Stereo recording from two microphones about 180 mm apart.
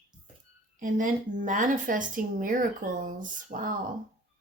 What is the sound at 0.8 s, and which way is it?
A woman's voice, 45° right (ahead or behind).